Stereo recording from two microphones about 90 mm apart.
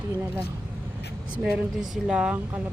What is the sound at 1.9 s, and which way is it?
Speech, 10° right (ahead or behind).